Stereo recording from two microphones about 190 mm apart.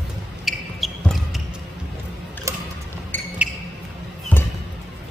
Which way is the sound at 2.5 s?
15° right (ahead or behind).